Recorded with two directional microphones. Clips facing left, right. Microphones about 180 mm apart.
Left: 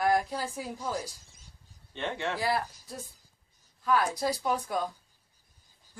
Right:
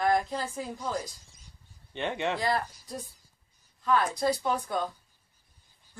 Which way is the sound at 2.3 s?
5° left (ahead or behind).